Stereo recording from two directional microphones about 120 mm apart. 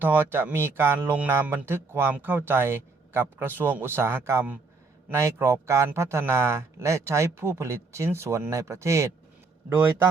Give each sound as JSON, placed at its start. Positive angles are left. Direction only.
{"t": 0.0, "sound": "speech", "side_deg": -15}